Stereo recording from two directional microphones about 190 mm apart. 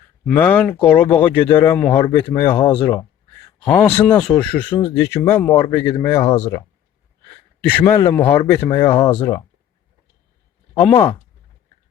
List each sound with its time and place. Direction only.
0.3 s speech: 10° left (ahead or behind)
4.7 s speech: 30° left (ahead or behind)
5.0 s speech: 15° left (ahead or behind)
5.9 s speech: 25° left (ahead or behind)
7.6 s speech: 10° left (ahead or behind)
8.2 s speech: 30° left (ahead or behind)
8.4 s speech: 15° left (ahead or behind)
10.8 s speech: 15° left (ahead or behind)